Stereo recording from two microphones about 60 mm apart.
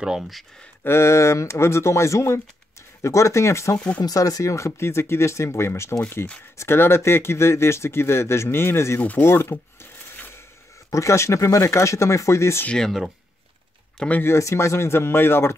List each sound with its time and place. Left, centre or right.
0.0 s speech: centre
0.8 s speech: left
4.0 s speech: left
10.1 s a sound: left
10.9 s speech: left
12.7 s speech: centre
14.0 s speech: centre
14.4 s speech: left